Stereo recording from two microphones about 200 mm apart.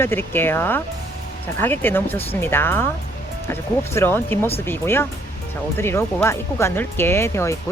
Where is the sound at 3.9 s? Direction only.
10° left (ahead or behind).